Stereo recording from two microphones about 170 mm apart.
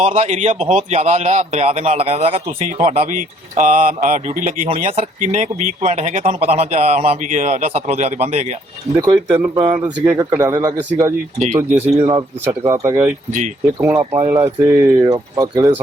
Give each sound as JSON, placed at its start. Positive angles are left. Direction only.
{"t": 0.0, "sound": "speech", "side_deg": -45}
{"t": 2.6, "sound": "speech", "side_deg": -45}
{"t": 9.0, "sound": "speech", "side_deg": -25}
{"t": 11.9, "sound": "speech", "side_deg": -35}
{"t": 12.5, "sound": "speech", "side_deg": -20}